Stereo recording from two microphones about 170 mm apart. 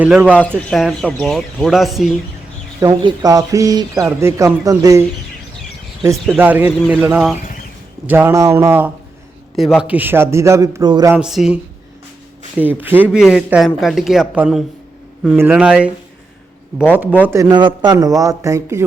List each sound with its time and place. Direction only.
0.0 s speech: 10° right (ahead or behind)
0.7 s a man's voice: centre (ahead or behind)
3.0 s a man's voice: 20° right (ahead or behind)
6.3 s speech: 10° right (ahead or behind)
9.6 s speech: 5° right (ahead or behind); by 11.1 s 20° right (ahead or behind)
11.1 s a man's voice: 5° right (ahead or behind); by 18.8 s 20° right (ahead or behind)